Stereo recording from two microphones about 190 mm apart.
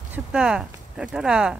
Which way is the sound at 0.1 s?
5° right (ahead or behind).